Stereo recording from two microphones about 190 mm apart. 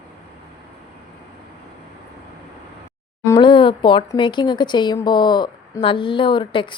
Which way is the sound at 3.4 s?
25° left (ahead or behind).